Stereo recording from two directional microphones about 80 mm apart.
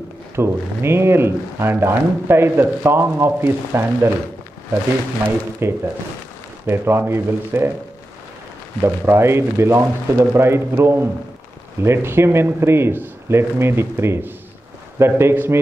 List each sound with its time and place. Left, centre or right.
0.4 s speech: right
5.2 s speech: right
8.8 s speech: right